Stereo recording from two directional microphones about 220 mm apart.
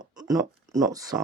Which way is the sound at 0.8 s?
15° right (ahead or behind).